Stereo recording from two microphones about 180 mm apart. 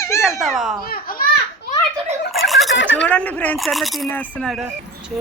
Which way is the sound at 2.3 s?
Centre (ahead or behind).